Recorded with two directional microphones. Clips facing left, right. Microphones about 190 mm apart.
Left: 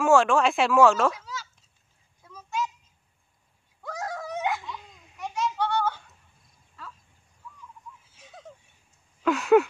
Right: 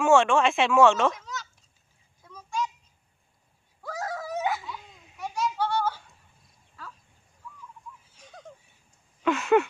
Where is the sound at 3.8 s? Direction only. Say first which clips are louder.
Even; centre (ahead or behind).